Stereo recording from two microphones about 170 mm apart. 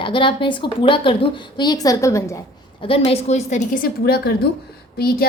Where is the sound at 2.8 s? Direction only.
30° left (ahead or behind); by 5.2 s 65° left (ahead or behind).